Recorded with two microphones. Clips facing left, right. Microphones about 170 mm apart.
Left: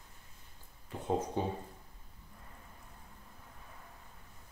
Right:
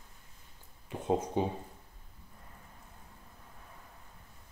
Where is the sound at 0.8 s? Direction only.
20° right (ahead or behind).